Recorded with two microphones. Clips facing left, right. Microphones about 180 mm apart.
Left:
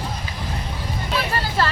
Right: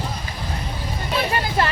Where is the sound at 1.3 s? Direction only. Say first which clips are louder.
Right 1 dB; 15° right (ahead or behind).